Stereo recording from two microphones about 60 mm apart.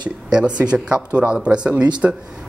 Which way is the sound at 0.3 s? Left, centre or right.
Centre.